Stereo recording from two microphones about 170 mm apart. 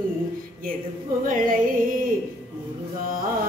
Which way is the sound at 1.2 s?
55° right (ahead or behind).